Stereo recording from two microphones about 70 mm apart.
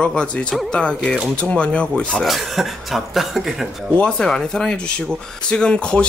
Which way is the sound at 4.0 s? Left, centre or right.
Centre.